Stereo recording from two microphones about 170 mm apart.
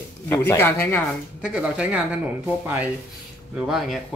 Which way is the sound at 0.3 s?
15° left (ahead or behind).